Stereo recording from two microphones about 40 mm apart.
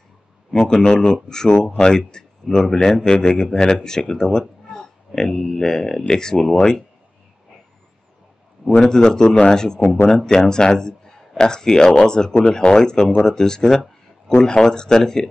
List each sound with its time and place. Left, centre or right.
0.5 s speech: centre
8.6 s speech: centre